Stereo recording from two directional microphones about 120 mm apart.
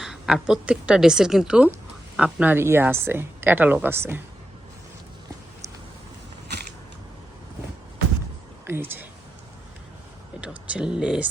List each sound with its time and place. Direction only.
0.0 s a woman's voice: 5° right (ahead or behind); by 4.2 s 20° right (ahead or behind)
8.6 s speech: 20° right (ahead or behind)
10.4 s speech: 10° right (ahead or behind)